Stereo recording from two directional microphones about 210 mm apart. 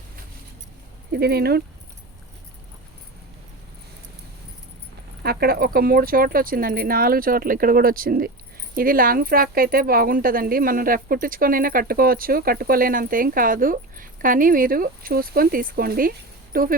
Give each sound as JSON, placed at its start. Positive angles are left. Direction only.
{"t": 1.1, "sound": "speech", "side_deg": -50}
{"t": 5.2, "sound": "speech", "side_deg": -45}